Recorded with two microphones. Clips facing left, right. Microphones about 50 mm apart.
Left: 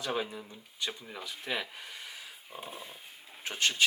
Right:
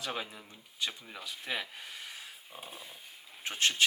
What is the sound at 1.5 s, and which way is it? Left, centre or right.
Speech, centre.